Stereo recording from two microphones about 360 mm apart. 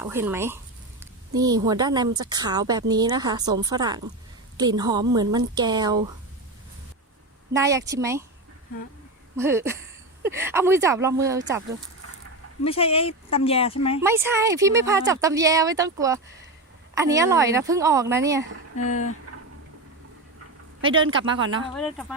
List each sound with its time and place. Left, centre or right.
0.0 s a woman's voice: centre
7.5 s a woman's voice: centre
9.3 s a woman's voice: centre
12.6 s speech: centre
14.0 s a woman's voice: centre
20.8 s a man's voice: right
21.7 s speech: centre